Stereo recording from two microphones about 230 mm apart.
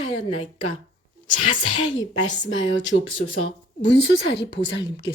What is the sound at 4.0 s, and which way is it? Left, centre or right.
A woman's voice, left.